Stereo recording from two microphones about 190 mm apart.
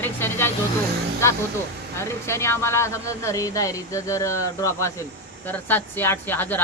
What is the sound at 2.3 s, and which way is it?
Speech, 15° left (ahead or behind).